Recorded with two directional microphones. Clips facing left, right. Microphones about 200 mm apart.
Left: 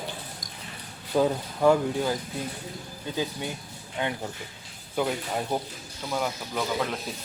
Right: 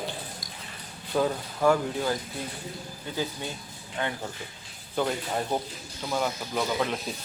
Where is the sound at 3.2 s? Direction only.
15° left (ahead or behind).